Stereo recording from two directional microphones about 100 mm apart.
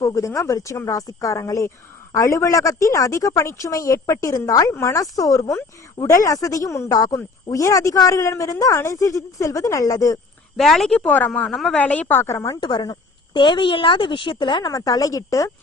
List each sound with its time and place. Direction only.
0.0 s a woman's voice: 30° left (ahead or behind)
10.6 s speech: centre (ahead or behind)
10.9 s a woman's voice: 15° left (ahead or behind)
12.5 s a woman's voice: 45° left (ahead or behind)
14.7 s a woman's voice: 35° left (ahead or behind)